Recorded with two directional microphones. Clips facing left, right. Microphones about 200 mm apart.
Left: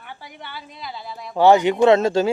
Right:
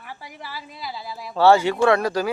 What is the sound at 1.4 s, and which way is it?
Speech, 20° left (ahead or behind).